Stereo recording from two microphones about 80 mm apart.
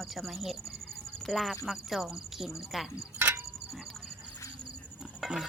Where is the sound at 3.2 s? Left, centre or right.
Right.